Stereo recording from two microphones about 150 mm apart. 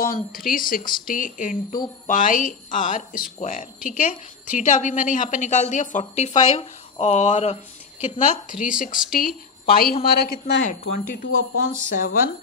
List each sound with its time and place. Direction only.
0.0 s a woman's voice: 75° left (ahead or behind); by 7.5 s 50° left (ahead or behind)
8.5 s a woman's voice: 60° left (ahead or behind)
9.7 s a woman's voice: 85° left
10.6 s a woman's voice: 55° left (ahead or behind)